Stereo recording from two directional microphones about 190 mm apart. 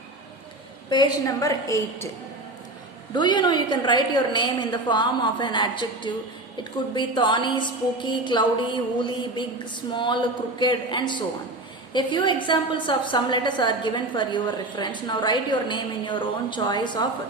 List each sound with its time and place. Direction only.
0.9 s a woman's voice: 20° left (ahead or behind)
3.2 s a woman's voice: 25° left (ahead or behind)